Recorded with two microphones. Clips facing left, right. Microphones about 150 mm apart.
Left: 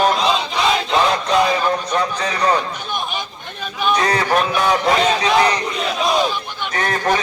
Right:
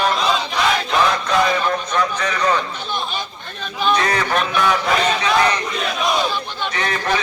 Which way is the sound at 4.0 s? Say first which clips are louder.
Left 2 dB; 35° left (ahead or behind).